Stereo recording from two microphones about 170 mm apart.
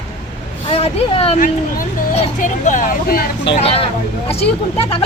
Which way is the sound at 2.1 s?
50° left (ahead or behind).